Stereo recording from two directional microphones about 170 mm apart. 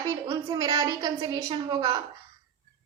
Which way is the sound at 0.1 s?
20° right (ahead or behind).